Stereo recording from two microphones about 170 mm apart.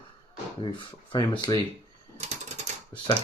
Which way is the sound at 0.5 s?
30° left (ahead or behind).